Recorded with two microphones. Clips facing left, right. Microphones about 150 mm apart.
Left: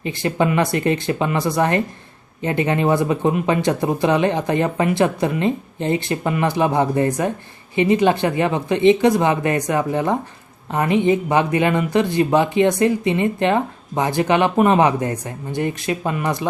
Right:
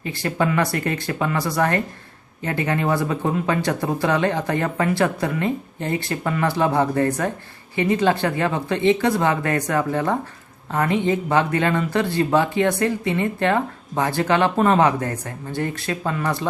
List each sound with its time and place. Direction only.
0.0 s speech: 20° left (ahead or behind)